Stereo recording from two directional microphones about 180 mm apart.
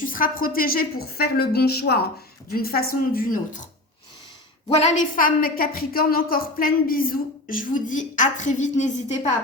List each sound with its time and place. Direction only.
0.0 s a woman's voice: 50° left (ahead or behind)
4.7 s a woman's voice: 40° left (ahead or behind)